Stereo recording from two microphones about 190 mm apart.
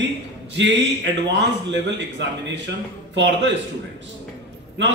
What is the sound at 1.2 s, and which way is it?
A man's voice, 70° right (ahead or behind).